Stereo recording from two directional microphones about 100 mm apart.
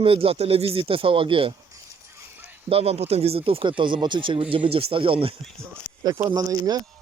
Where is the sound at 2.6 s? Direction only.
85° right; by 5.3 s 65° right (ahead or behind).